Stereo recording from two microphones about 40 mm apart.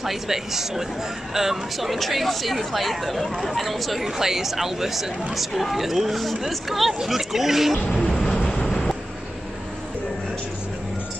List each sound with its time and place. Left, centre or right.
0.0 s speech: centre
7.8 s vehicle: centre